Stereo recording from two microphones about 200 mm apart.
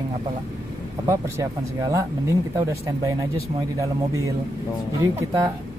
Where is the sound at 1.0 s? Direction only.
15° right (ahead or behind).